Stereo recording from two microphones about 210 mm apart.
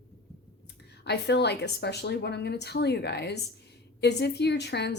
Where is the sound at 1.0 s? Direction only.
50° left (ahead or behind).